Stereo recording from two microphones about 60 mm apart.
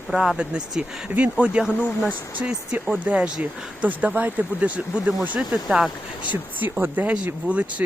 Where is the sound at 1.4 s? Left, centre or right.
Centre.